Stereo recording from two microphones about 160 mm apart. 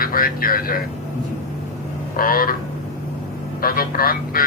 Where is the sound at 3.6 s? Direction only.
65° left (ahead or behind).